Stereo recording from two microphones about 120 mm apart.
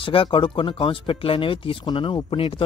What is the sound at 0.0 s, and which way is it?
Speech, 45° left (ahead or behind).